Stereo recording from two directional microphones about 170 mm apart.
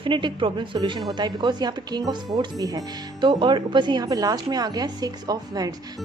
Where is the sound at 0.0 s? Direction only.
30° right (ahead or behind).